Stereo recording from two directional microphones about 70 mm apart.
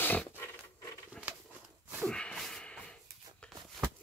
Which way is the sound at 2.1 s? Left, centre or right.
Centre.